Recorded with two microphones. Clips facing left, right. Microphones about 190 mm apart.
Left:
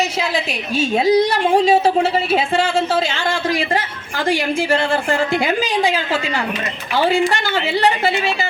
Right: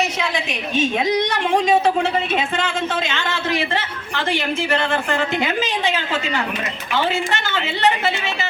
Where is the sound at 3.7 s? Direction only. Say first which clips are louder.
Left 3 dB; 35° left (ahead or behind).